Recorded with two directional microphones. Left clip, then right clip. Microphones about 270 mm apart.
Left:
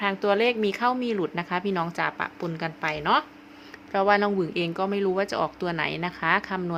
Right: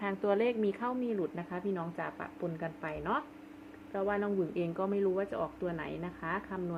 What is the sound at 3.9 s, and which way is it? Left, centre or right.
Speech, left.